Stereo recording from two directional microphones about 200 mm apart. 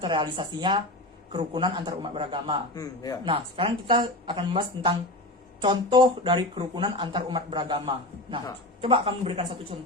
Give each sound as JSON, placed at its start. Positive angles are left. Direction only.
{"t": 0.0, "sound": "speech", "side_deg": -25}
{"t": 2.7, "sound": "a man's voice", "side_deg": 20}
{"t": 3.2, "sound": "speech", "side_deg": -25}